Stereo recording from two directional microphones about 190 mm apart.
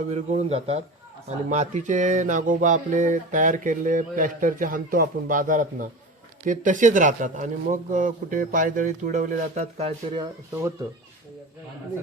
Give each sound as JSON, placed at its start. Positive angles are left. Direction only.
{"t": 0.1, "sound": "speech", "side_deg": -35}